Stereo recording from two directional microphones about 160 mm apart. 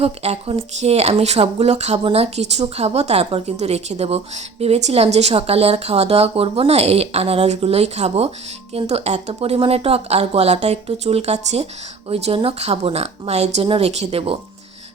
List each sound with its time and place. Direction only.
0.0 s speech: 40° right (ahead or behind)